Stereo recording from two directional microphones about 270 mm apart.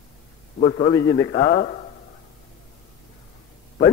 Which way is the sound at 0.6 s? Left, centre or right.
Left.